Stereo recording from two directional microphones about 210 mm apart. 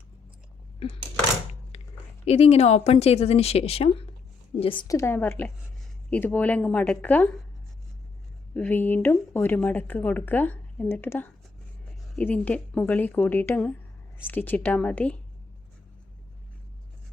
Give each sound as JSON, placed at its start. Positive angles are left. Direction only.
{"t": 2.2, "sound": "speech", "side_deg": 30}
{"t": 8.5, "sound": "speech", "side_deg": 5}